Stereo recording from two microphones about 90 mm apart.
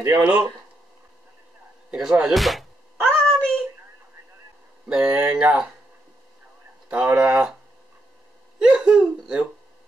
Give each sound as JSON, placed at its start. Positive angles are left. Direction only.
{"t": 0.1, "sound": "speech", "side_deg": -20}
{"t": 2.0, "sound": "speech", "side_deg": -5}
{"t": 4.8, "sound": "speech", "side_deg": -10}
{"t": 6.9, "sound": "speech", "side_deg": -15}
{"t": 8.5, "sound": "speech", "side_deg": -10}